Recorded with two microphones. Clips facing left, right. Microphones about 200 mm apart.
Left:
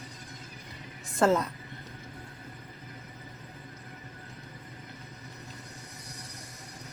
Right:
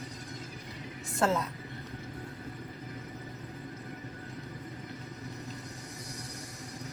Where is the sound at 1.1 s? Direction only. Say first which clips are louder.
Left 4 dB; centre (ahead or behind).